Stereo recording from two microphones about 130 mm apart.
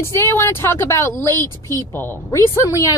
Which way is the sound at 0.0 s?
20° left (ahead or behind).